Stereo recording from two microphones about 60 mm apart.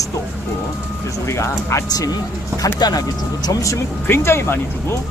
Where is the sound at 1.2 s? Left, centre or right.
Left.